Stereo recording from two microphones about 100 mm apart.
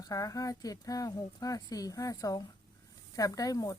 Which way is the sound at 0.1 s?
35° left (ahead or behind).